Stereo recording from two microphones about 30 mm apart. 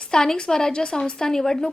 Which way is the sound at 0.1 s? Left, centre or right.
Left.